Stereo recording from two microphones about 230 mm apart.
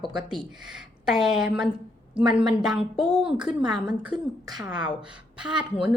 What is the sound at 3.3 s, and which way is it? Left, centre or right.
Speech, centre.